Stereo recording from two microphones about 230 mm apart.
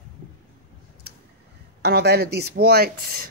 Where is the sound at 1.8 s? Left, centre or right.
Right.